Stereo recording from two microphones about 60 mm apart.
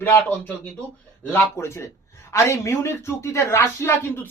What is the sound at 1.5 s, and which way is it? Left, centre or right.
Speech, left.